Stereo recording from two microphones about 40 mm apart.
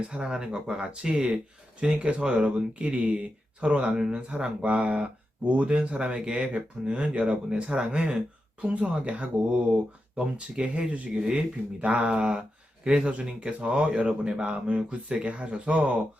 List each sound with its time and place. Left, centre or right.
0.1 s speech: right